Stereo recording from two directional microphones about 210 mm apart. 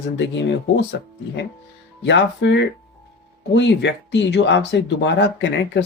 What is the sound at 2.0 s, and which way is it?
Speech, 55° left (ahead or behind).